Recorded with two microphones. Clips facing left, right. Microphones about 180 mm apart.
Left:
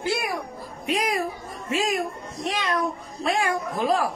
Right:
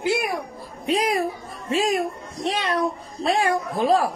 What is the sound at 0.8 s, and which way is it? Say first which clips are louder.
A woman's voice: right 3 dB; 30° right (ahead or behind).